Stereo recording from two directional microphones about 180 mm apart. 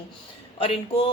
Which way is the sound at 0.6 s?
30° left (ahead or behind).